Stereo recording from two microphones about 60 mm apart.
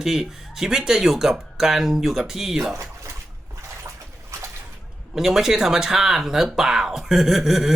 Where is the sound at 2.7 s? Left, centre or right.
Right.